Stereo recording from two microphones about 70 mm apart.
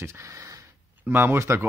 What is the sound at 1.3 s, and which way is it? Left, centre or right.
Speech, right.